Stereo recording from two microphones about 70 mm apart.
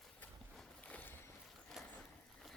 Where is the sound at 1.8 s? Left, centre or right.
Centre.